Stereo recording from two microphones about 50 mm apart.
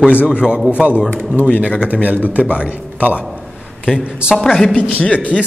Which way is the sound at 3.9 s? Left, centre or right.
Centre.